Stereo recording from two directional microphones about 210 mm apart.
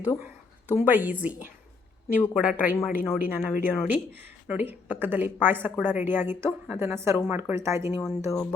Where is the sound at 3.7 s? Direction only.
10° right (ahead or behind).